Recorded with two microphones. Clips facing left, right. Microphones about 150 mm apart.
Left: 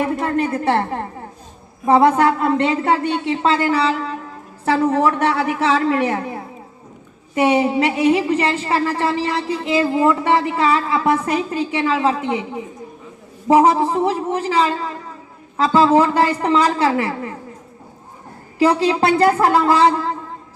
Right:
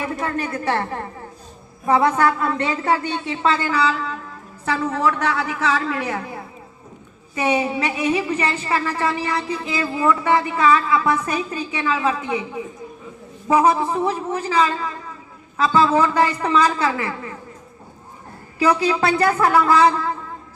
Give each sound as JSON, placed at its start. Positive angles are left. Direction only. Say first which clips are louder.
{"t": 0.0, "sound": "speech", "louder": "left 5 dB", "side_deg": 30}
{"t": 7.3, "sound": "speech", "louder": "left 5 dB", "side_deg": 30}
{"t": 13.5, "sound": "speech", "louder": "left 4 dB", "side_deg": 30}
{"t": 18.6, "sound": "speech", "louder": "left 3 dB", "side_deg": 30}